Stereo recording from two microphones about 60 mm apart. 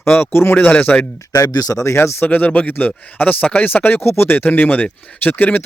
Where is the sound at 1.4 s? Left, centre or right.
Left.